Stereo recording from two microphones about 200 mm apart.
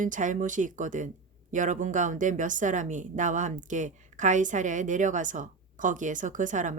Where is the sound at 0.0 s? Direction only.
40° right (ahead or behind).